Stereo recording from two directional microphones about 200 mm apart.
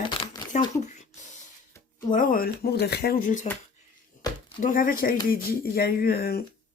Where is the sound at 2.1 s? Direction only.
45° left (ahead or behind).